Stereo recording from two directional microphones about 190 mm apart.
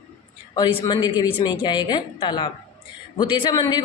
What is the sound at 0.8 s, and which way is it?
A man's voice, 25° left (ahead or behind).